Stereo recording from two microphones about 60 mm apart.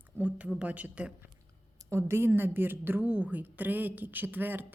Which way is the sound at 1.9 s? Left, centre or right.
Right.